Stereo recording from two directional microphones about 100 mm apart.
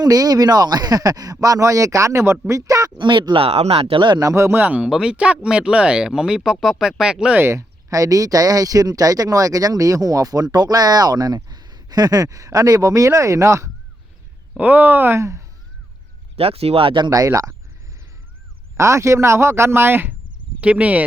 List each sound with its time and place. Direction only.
0.0 s speech: 40° right (ahead or behind)
3.0 s speech: 55° right (ahead or behind); by 4.0 s 75° right (ahead or behind)
4.2 s speech: 30° right (ahead or behind)
4.6 s speech: 15° right (ahead or behind)
7.3 s speech: 25° right (ahead or behind)
14.5 s speech: 15° right (ahead or behind)
16.3 s speech: 75° right (ahead or behind); by 17.1 s 55° right (ahead or behind)
17.1 s speech: 35° right (ahead or behind)
18.8 s speech: 30° right (ahead or behind); by 21.0 s 15° right (ahead or behind)